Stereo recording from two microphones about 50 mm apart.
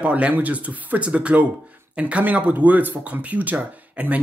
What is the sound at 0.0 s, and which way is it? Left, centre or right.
Speech, right.